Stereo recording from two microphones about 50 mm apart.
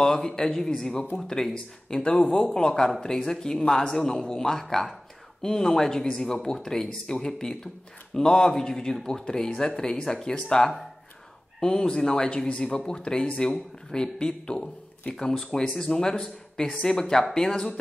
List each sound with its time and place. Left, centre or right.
0.0 s speech: centre